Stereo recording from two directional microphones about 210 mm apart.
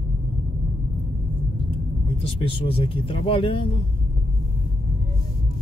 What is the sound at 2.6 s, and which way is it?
Speech, 25° left (ahead or behind).